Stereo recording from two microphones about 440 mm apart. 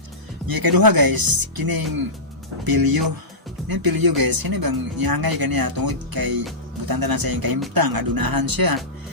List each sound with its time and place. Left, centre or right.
0.4 s speech: right